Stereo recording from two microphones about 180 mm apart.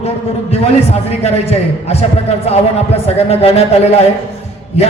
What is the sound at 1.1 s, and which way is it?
A man's voice, 35° left (ahead or behind).